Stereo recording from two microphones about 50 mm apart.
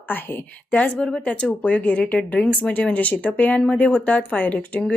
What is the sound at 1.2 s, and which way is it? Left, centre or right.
A woman's voice, left.